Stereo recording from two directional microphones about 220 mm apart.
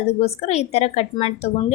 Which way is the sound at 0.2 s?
30° left (ahead or behind).